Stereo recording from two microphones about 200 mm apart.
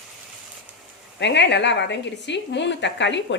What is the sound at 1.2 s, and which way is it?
A woman's voice, 60° left (ahead or behind).